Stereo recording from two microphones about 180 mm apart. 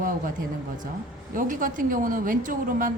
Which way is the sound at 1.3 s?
50° right (ahead or behind).